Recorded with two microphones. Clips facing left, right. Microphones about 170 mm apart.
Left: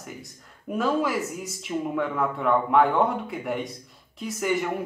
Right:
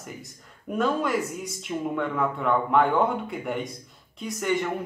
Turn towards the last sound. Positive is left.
turn(degrees=5)  # may be behind; listen again after turning